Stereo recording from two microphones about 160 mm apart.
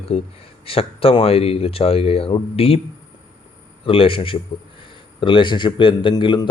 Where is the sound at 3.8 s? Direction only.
35° left (ahead or behind).